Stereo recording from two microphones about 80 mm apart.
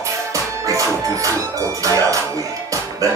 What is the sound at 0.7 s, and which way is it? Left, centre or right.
Music, right.